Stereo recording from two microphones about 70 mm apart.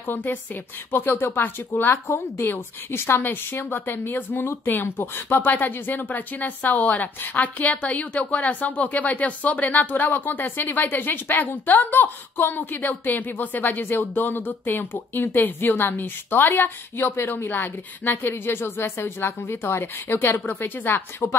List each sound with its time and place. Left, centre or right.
0.0 s a woman's voice: left